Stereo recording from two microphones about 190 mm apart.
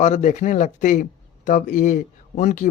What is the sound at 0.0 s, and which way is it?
A man's voice, 40° left (ahead or behind).